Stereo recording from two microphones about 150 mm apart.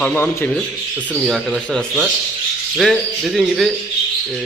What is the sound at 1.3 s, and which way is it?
Speech, centre (ahead or behind).